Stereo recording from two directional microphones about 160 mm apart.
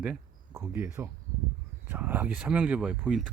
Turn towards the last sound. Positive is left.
turn(degrees=-5)  # may be behind; listen again after turning